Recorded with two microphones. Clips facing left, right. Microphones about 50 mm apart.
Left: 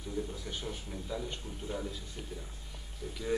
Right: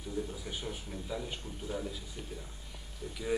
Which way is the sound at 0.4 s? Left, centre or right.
Centre.